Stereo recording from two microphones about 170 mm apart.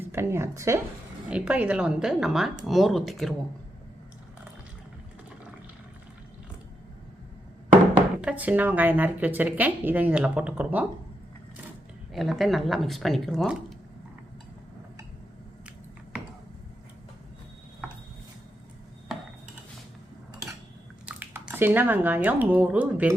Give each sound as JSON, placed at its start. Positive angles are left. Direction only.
{"t": 0.0, "sound": "a woman's voice", "side_deg": -15}
{"t": 8.2, "sound": "speech", "side_deg": -5}
{"t": 12.1, "sound": "speech", "side_deg": 0}
{"t": 21.1, "sound": "speech", "side_deg": -10}